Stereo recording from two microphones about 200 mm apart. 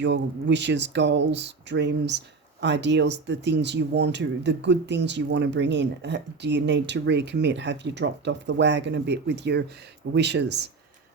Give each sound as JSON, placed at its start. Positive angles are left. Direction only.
{"t": 0.0, "sound": "speech", "side_deg": -60}